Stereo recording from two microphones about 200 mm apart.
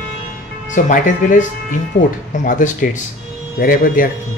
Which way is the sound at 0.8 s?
40° left (ahead or behind).